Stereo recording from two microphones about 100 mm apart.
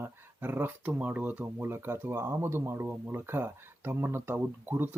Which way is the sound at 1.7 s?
25° right (ahead or behind).